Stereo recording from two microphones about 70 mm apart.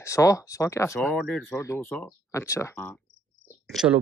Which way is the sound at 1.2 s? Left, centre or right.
Centre.